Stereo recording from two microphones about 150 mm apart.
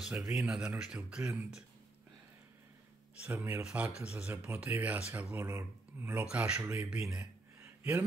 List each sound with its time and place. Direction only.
0.0 s speech: 5° right (ahead or behind)
3.2 s speech: 15° right (ahead or behind)
6.9 s speech: 5° right (ahead or behind)
7.2 s a sound: 15° right (ahead or behind)